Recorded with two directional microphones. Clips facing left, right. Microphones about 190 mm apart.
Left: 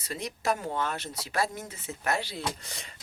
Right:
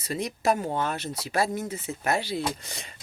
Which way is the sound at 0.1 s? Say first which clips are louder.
Right 5 dB; 10° right (ahead or behind).